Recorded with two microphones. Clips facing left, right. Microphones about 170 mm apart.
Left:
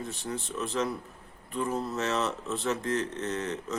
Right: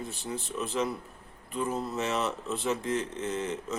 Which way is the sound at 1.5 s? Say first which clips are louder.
Left 1 dB; centre (ahead or behind).